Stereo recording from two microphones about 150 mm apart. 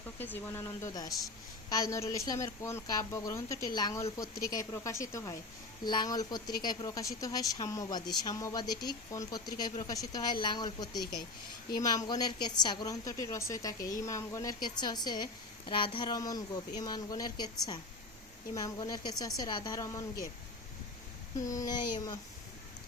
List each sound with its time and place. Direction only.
0.2 s speech: 15° left (ahead or behind)
21.4 s speech: 25° left (ahead or behind)